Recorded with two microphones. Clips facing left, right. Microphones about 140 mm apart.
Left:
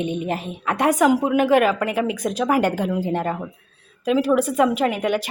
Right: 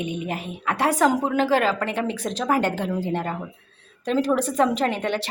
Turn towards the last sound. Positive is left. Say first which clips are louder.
# left 3 dB
turn(degrees=10)  # may be behind; listen again after turning